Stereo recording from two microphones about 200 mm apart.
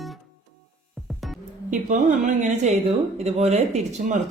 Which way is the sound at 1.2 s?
Centre (ahead or behind).